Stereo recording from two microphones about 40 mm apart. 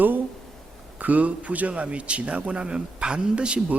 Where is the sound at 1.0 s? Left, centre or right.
Right.